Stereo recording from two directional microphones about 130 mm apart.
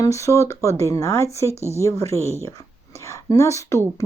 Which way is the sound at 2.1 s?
20° left (ahead or behind).